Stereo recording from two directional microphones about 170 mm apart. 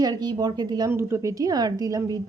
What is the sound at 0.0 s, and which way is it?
A woman's voice, 25° right (ahead or behind).